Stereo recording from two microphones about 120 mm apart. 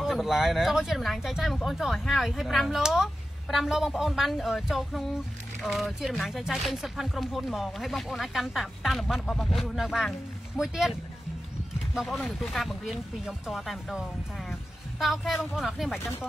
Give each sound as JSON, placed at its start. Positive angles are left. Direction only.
{"t": 0.0, "sound": "speech", "side_deg": 0}
{"t": 15.5, "sound": "speech", "side_deg": 0}
{"t": 16.0, "sound": "speech", "side_deg": 20}